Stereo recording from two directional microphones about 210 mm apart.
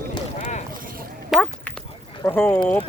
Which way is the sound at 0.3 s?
35° left (ahead or behind).